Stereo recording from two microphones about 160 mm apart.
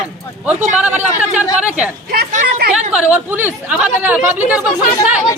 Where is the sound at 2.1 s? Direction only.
60° right (ahead or behind).